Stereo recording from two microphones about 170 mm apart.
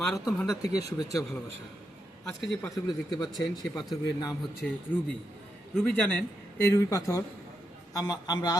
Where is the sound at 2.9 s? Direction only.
25° left (ahead or behind).